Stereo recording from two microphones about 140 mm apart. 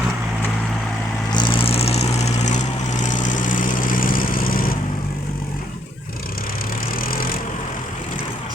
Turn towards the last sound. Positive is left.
turn(degrees=90)